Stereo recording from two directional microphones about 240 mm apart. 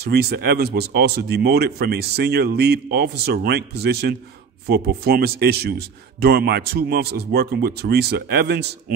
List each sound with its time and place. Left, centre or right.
0.0 s speech: right